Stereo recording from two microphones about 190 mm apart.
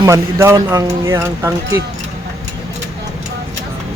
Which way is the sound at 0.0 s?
15° right (ahead or behind).